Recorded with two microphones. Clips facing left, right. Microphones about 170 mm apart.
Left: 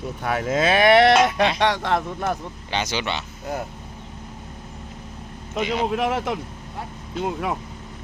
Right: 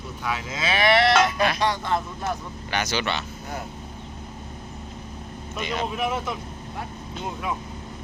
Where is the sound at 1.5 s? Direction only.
80° left.